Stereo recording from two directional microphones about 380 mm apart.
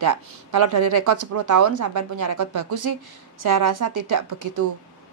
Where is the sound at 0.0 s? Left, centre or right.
Right.